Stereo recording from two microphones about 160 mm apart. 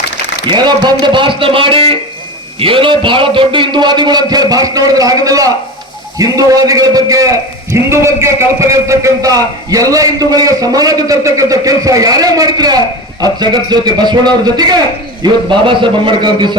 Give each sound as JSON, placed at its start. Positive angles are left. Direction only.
{"t": 0.4, "sound": "a man's voice", "side_deg": -30}